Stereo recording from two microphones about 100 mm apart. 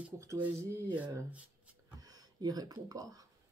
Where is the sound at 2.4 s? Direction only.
40° right (ahead or behind).